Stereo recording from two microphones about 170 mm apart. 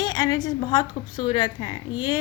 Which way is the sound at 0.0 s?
25° left (ahead or behind).